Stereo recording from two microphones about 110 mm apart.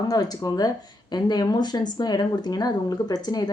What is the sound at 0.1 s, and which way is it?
A woman's voice, 35° left (ahead or behind).